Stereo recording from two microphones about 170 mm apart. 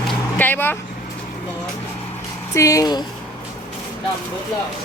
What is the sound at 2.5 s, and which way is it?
Speech, 20° left (ahead or behind).